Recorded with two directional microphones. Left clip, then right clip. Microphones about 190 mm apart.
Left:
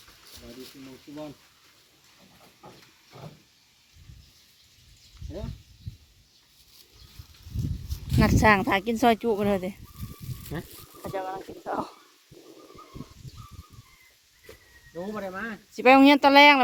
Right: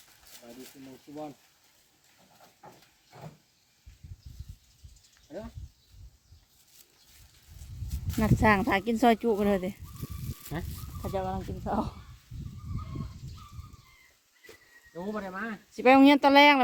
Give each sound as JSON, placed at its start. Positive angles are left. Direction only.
{"t": 8.2, "sound": "speech", "side_deg": 0}
{"t": 10.5, "sound": "speech", "side_deg": -30}
{"t": 14.9, "sound": "speech", "side_deg": -55}
{"t": 15.7, "sound": "speech", "side_deg": -5}